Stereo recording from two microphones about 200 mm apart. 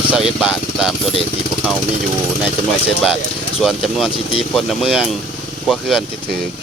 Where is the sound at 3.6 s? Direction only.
Centre (ahead or behind).